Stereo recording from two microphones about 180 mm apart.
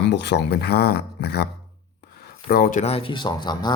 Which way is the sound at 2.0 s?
60° left (ahead or behind).